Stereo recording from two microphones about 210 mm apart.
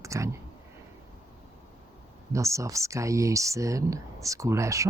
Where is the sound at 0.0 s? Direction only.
15° right (ahead or behind).